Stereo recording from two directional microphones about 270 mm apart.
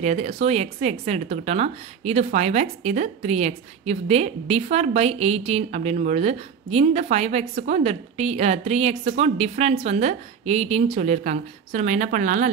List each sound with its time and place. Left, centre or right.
0.0 s speech: right